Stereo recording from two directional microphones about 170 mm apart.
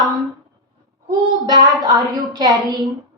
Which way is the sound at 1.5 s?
20° right (ahead or behind).